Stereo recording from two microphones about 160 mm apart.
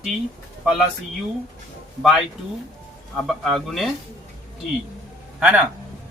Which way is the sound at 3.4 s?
Centre (ahead or behind).